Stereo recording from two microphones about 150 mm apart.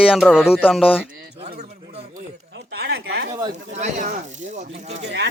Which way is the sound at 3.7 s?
55° right (ahead or behind).